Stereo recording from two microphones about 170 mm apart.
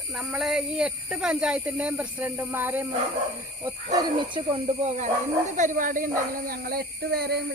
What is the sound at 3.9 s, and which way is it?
Speech, 30° right (ahead or behind).